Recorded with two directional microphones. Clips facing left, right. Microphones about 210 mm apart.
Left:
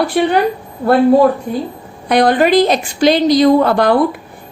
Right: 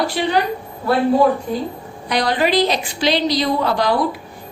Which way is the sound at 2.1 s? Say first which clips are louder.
Left 7 dB; 50° left (ahead or behind).